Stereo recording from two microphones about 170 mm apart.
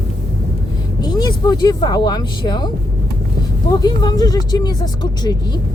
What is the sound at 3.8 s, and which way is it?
Speech, 25° left (ahead or behind).